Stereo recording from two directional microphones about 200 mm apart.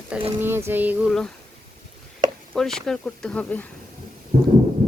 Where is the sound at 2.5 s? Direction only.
Centre (ahead or behind).